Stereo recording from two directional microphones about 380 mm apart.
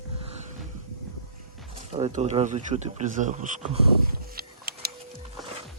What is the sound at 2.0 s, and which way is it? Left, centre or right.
Speech, centre.